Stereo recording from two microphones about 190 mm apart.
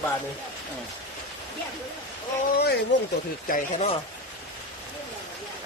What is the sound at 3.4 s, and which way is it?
Speech, 45° left (ahead or behind).